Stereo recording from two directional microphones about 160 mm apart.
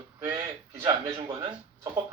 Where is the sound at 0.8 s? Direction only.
25° right (ahead or behind).